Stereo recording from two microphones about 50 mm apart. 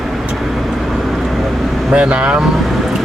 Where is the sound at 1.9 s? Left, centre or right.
Right.